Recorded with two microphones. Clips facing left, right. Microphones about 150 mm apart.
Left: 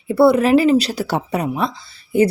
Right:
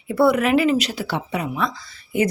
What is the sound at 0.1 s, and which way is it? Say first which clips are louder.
Speech: left 4 dB; 30° left (ahead or behind).